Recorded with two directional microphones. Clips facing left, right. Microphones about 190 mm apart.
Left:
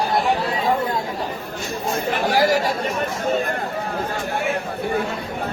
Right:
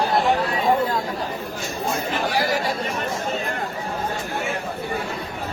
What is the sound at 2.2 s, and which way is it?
Chatter, 45° left (ahead or behind).